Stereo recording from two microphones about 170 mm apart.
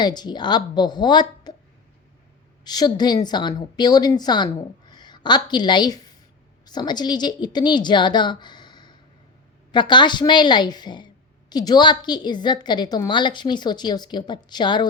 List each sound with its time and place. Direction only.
0.0 s a woman's voice: 25° left (ahead or behind)
2.6 s a woman's voice: 25° left (ahead or behind)